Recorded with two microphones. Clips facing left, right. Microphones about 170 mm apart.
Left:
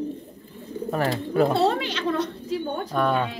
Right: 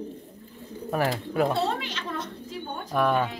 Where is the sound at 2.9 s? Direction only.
5° right (ahead or behind).